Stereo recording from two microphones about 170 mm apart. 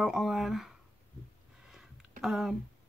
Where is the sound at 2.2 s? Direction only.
Centre (ahead or behind).